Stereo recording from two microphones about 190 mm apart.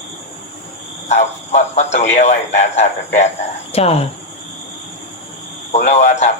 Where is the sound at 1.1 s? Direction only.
35° left (ahead or behind).